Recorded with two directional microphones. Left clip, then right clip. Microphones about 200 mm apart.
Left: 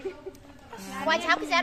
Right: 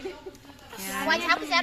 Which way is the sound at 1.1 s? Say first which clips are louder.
Even; 15° left (ahead or behind).